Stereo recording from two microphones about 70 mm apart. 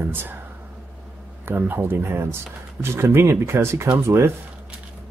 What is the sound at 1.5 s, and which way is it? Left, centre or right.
Speech, right.